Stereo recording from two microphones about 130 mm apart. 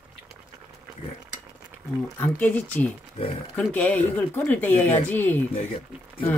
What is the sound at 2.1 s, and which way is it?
Speech, 15° left (ahead or behind).